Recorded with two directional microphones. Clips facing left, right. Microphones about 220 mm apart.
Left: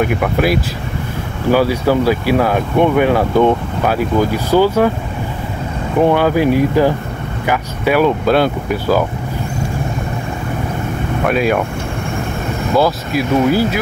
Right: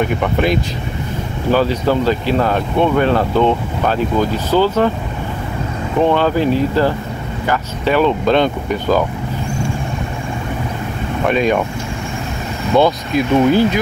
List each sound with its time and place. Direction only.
0.0 s speech: 5° left (ahead or behind)
5.9 s speech: 10° left (ahead or behind)
11.2 s speech: 5° left (ahead or behind)
12.7 s speech: 5° left (ahead or behind)